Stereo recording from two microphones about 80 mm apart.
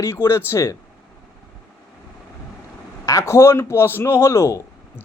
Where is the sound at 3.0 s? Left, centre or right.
Left.